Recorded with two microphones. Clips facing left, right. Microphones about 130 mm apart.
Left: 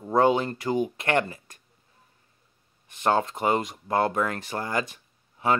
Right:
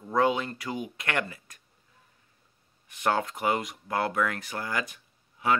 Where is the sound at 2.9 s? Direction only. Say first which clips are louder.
Left 3 dB; 25° left (ahead or behind).